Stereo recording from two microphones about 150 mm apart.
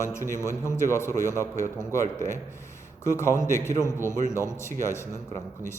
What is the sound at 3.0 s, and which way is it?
A man's voice, 20° left (ahead or behind).